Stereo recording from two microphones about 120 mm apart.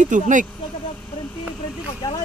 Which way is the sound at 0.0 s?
90° right.